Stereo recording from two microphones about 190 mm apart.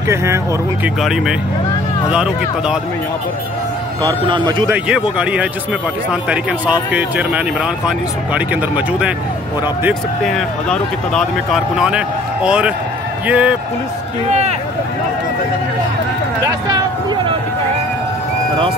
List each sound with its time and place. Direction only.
0.1 s speech: 15° right (ahead or behind)
0.8 s speech: centre (ahead or behind)
4.3 s speech: 25° right (ahead or behind)
4.7 s speech: 5° right (ahead or behind)
16.4 s a sound: 20° right (ahead or behind)